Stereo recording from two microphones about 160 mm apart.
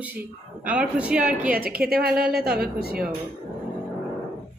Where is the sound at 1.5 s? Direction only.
70° right (ahead or behind).